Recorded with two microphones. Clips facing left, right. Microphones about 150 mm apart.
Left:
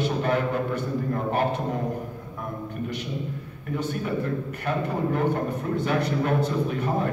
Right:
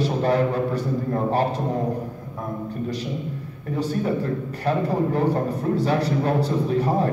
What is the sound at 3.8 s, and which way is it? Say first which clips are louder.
A man's voice: right 4 dB; 35° right (ahead or behind).